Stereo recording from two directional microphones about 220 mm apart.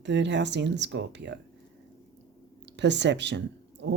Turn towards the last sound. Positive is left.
turn(degrees=-50)  # may be behind; listen again after turning